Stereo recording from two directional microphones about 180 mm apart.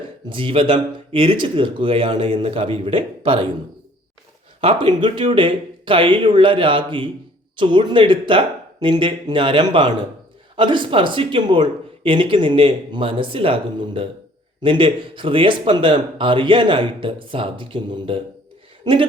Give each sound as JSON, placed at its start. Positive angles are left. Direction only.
{"t": 0.3, "sound": "speech", "side_deg": -30}
{"t": 4.6, "sound": "speech", "side_deg": -30}